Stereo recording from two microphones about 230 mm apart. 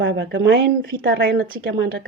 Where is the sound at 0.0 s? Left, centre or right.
Right.